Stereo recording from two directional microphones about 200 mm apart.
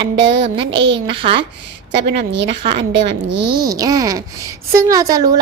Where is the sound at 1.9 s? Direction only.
55° right (ahead or behind).